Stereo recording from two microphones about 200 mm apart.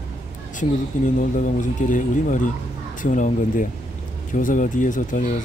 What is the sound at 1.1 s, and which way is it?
Speech, 40° left (ahead or behind).